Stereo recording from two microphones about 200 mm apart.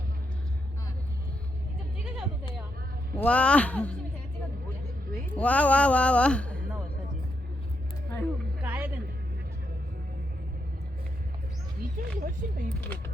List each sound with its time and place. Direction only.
3.2 s speech: 5° left (ahead or behind)
5.4 s speech: 5° left (ahead or behind)
8.6 s music: 10° right (ahead or behind)
11.9 s speech: 45° right (ahead or behind)